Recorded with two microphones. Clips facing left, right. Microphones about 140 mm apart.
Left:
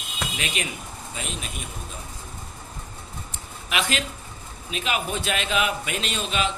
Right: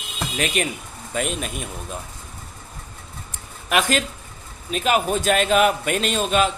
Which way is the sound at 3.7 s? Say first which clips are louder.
Right 6 dB; 45° right (ahead or behind).